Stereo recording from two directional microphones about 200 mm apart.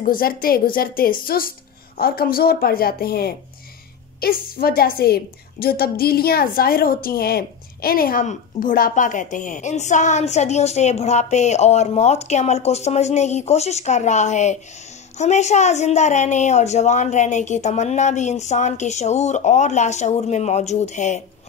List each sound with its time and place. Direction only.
0.0 s a woman's voice: 45° left (ahead or behind)